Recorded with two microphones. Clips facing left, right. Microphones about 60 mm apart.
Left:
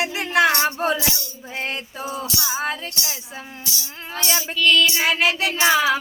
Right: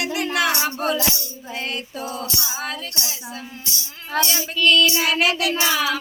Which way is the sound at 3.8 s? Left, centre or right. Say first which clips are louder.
Left 2 dB; left.